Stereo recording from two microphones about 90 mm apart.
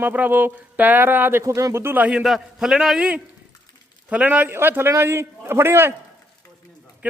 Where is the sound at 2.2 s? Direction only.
5° right (ahead or behind).